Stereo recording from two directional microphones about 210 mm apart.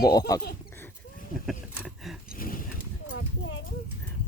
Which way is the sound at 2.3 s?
45° left (ahead or behind).